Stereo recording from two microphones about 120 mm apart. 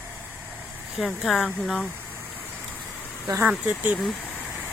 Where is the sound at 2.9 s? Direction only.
15° left (ahead or behind).